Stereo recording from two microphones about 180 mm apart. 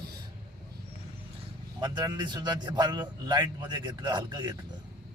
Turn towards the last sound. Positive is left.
turn(degrees=-25)  # may be behind; listen again after turning